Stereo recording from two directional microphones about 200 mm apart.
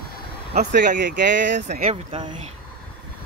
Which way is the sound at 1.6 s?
40° right (ahead or behind).